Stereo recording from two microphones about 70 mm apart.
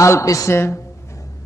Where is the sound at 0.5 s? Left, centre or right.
Left.